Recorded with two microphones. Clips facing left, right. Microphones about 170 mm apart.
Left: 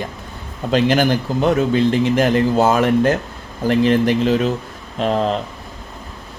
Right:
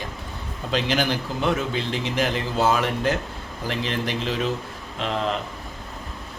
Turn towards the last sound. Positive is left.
turn(degrees=45)  # may be behind; listen again after turning